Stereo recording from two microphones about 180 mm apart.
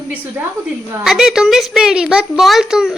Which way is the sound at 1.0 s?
Centre (ahead or behind).